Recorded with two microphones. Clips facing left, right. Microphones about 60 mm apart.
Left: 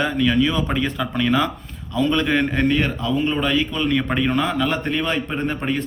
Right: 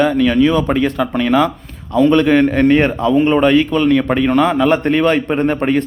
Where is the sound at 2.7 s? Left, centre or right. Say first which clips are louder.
Right 8 dB; right.